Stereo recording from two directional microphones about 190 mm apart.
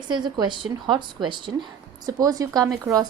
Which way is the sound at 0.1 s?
25° right (ahead or behind).